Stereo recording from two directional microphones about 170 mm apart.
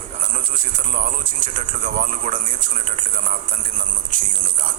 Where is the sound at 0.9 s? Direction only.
50° right (ahead or behind).